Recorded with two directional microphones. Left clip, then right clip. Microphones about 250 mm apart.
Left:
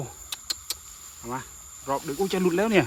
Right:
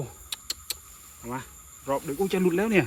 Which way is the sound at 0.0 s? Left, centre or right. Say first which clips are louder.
Even; centre.